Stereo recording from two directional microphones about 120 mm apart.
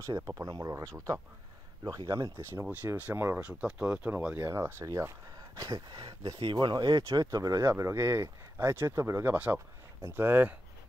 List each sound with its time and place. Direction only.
0.0 s speech: 25° right (ahead or behind)
2.5 s speech: 15° right (ahead or behind)
5.6 s speech: 35° right (ahead or behind); by 10.5 s 15° right (ahead or behind)